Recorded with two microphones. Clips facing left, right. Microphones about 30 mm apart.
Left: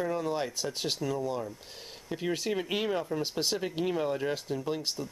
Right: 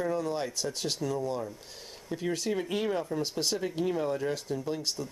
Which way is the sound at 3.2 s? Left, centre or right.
Left.